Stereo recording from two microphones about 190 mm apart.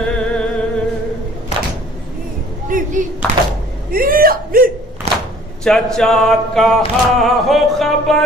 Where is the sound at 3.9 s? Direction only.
50° right (ahead or behind).